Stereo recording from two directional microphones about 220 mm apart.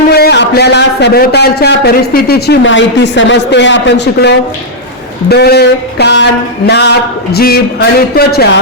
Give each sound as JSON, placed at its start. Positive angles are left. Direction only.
{"t": 0.1, "sound": "a man's voice", "side_deg": 50}